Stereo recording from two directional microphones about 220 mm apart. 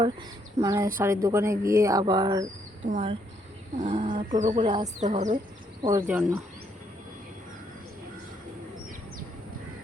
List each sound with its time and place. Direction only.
0.0 s speech: 15° right (ahead or behind)
2.9 s speech: 30° right (ahead or behind)
3.8 s a sound: 35° right (ahead or behind)
4.4 s speech: 20° right (ahead or behind)
5.1 s a sound: 35° right (ahead or behind)
5.9 s speech: 10° right (ahead or behind)